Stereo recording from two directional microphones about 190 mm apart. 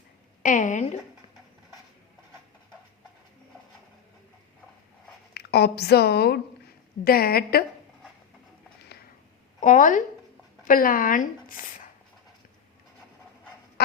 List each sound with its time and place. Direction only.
0.4 s a woman's voice: 40° left (ahead or behind)
5.3 s a woman's voice: 60° left (ahead or behind)
9.6 s a woman's voice: 45° left (ahead or behind)